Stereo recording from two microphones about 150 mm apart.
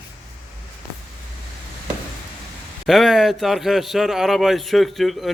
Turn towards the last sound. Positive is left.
turn(degrees=0)  # may be behind; listen again after turning